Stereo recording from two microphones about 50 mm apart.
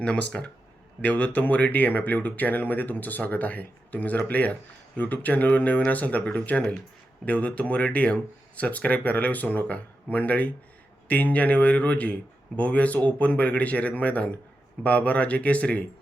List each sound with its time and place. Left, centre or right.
0.0 s speech: left
1.0 s speech: left